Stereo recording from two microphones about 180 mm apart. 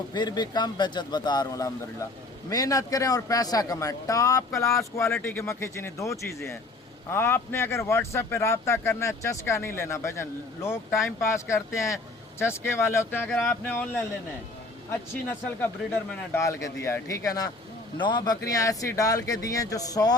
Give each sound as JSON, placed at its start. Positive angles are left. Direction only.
{"t": 0.1, "sound": "speech", "side_deg": 25}
{"t": 15.1, "sound": "speech", "side_deg": 10}